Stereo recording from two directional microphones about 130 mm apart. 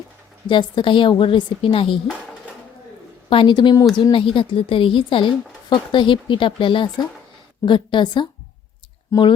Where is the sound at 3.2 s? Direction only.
40° left (ahead or behind).